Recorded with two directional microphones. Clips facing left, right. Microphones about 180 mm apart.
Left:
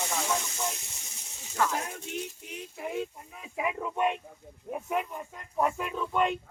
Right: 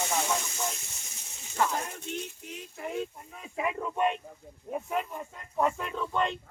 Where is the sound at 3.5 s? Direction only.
10° left (ahead or behind).